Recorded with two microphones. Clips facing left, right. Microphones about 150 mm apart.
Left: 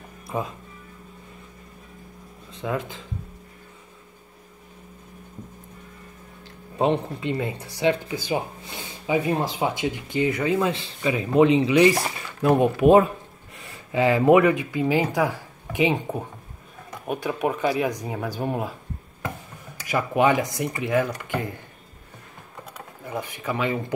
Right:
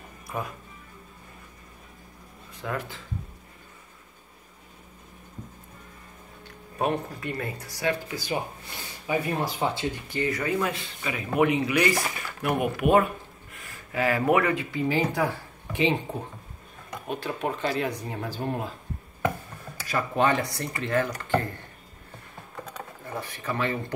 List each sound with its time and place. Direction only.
0.3 s speech: 20° left (ahead or behind)
2.5 s speech: 20° left (ahead or behind)
6.8 s speech: 20° left (ahead or behind)
17.1 s speech: 10° left (ahead or behind)
19.8 s speech: 15° left (ahead or behind)
22.7 s speech: 15° left (ahead or behind)